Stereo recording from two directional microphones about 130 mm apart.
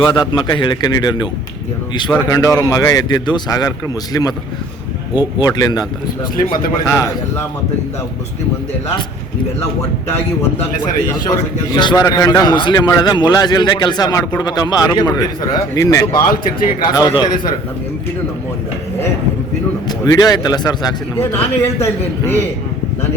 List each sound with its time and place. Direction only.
0.0 s a man's voice: 35° left (ahead or behind)
2.3 s speech: 30° left (ahead or behind)
6.8 s speech: 25° left (ahead or behind)
11.3 s a man's voice: 35° left (ahead or behind)
16.3 s speech: 90° left
16.9 s a man's voice: 30° left (ahead or behind)
20.1 s a man's voice: 30° left (ahead or behind)
21.2 s speech: 20° left (ahead or behind)